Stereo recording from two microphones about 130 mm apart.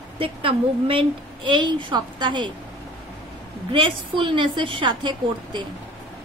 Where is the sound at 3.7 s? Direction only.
40° right (ahead or behind).